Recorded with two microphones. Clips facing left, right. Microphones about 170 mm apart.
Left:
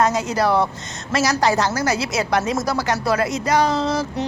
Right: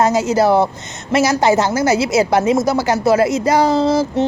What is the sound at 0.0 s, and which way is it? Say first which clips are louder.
A woman's voice: right 5 dB; 25° right (ahead or behind).